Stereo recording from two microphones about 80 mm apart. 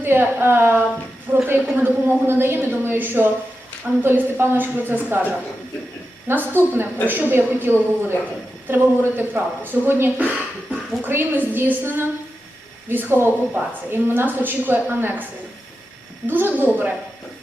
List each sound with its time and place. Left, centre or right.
0.0 s a woman's voice: right